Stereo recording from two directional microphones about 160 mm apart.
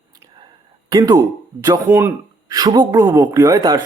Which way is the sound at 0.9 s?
25° right (ahead or behind).